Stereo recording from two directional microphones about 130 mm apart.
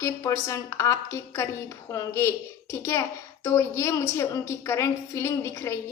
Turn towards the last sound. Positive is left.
turn(degrees=20)  # may be behind; listen again after turning